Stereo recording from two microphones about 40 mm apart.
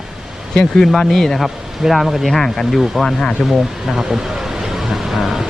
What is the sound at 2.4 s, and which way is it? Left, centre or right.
Speech, centre.